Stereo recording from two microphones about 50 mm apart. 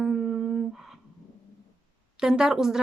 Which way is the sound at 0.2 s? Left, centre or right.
Centre.